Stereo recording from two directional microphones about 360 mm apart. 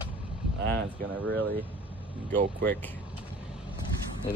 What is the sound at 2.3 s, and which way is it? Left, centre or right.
Speech, right.